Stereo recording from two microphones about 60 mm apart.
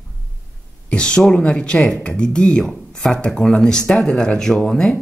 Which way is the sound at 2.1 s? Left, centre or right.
Centre.